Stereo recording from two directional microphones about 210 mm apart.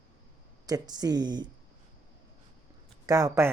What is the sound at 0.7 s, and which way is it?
Speech, 20° right (ahead or behind).